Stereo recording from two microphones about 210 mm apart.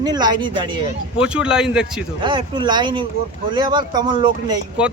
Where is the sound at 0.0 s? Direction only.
20° right (ahead or behind).